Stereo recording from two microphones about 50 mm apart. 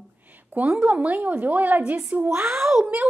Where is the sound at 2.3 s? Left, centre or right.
Right.